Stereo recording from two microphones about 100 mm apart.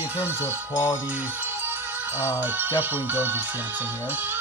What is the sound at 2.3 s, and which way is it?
Speech, 20° right (ahead or behind).